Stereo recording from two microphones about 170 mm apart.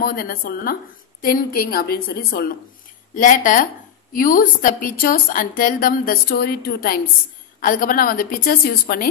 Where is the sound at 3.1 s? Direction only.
50° left (ahead or behind).